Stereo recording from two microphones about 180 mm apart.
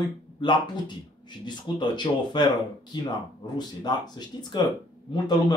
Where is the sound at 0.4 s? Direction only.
25° left (ahead or behind).